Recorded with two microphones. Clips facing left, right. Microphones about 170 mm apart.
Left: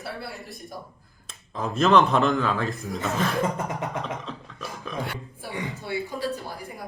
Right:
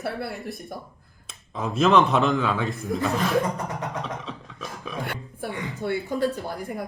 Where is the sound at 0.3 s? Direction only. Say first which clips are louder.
Right 5 dB; centre (ahead or behind).